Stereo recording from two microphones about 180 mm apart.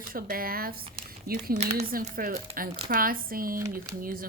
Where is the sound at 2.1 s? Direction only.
55° right (ahead or behind).